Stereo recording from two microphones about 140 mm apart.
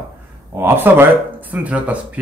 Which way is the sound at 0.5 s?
15° right (ahead or behind).